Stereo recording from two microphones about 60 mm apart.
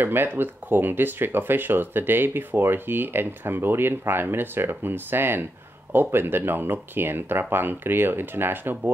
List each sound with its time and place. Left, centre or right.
0.0 s speech: right